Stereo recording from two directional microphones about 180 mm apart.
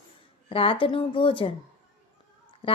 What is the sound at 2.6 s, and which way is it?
Speech, 30° left (ahead or behind).